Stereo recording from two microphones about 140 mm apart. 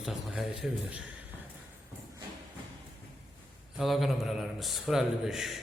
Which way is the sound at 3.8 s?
Centre (ahead or behind).